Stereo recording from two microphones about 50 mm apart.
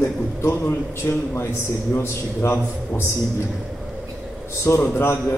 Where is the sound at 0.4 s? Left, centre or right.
Left.